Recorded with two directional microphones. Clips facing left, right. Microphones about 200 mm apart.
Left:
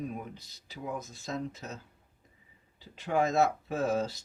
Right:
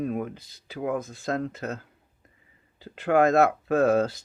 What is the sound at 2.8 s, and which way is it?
Speech, 55° right (ahead or behind).